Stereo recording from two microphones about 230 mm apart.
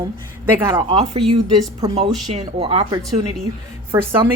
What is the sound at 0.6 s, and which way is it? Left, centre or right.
Speech, centre.